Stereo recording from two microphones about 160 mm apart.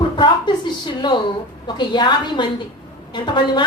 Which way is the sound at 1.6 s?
30° left (ahead or behind).